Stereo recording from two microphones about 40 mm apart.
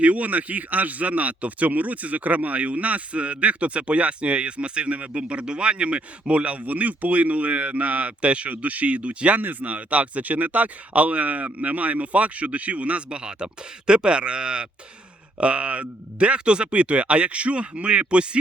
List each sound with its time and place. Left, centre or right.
0.0 s speech: right
9.4 s speech: right
13.1 s speech: right